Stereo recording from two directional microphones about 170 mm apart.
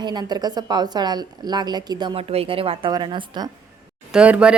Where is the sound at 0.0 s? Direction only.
25° right (ahead or behind).